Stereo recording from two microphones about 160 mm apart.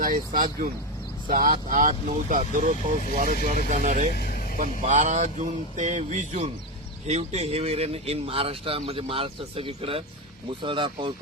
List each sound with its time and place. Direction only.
0.0 s speech: 55° right (ahead or behind)
4.1 s vehicle: 65° left (ahead or behind)
4.5 s speech: 50° right (ahead or behind); by 11.1 s 30° right (ahead or behind)